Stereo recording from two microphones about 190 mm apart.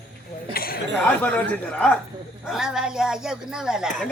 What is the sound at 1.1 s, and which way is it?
A man's voice, 5° left (ahead or behind).